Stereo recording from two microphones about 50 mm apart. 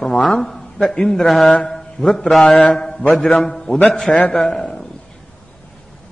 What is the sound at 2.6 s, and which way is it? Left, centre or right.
Speech, left.